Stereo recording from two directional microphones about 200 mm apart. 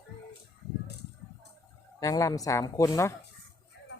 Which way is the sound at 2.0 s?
15° left (ahead or behind).